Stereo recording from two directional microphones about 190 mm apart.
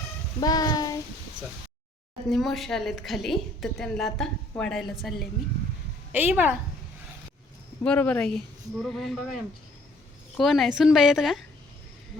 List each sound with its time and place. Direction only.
0.3 s child singing: 20° left (ahead or behind)
2.3 s a woman's voice: centre (ahead or behind)
7.9 s a woman's voice: 5° left (ahead or behind)